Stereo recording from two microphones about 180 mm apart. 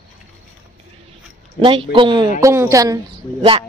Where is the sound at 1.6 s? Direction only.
30° right (ahead or behind).